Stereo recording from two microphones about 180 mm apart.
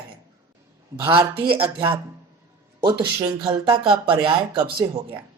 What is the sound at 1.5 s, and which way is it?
Speech, 30° right (ahead or behind).